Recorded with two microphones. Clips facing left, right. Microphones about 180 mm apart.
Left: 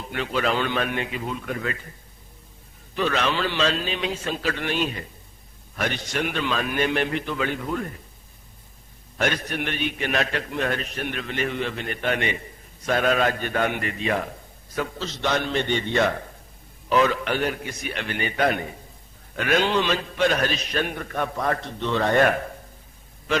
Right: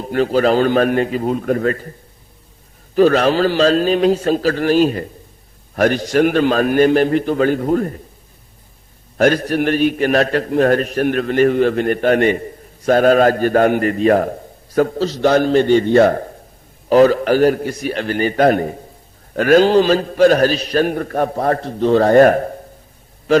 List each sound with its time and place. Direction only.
0.0 s a man's voice: 40° right (ahead or behind)
2.9 s a man's voice: 40° right (ahead or behind)
9.1 s a man's voice: 40° right (ahead or behind)